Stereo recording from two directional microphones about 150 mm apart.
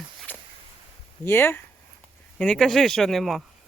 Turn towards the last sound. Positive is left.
turn(degrees=0)  # may be behind; listen again after turning